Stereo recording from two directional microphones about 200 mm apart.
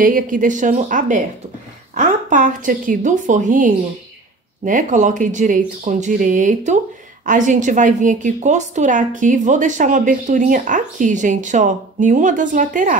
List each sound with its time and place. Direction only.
0.0 s a woman's voice: 40° right (ahead or behind)